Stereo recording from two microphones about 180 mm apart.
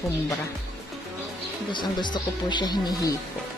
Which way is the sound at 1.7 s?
25° left (ahead or behind).